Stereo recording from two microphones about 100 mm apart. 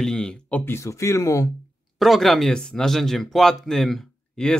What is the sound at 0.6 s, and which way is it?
Speech, 25° left (ahead or behind).